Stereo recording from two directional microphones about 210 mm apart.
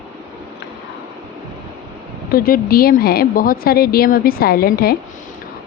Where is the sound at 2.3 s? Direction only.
45° left (ahead or behind).